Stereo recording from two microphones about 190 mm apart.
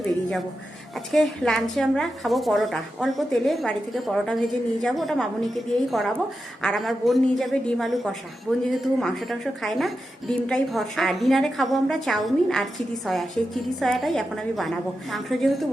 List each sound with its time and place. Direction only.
1.1 s a woman's voice: centre (ahead or behind)